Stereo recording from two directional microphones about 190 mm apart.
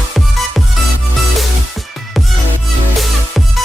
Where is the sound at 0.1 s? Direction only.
Centre (ahead or behind).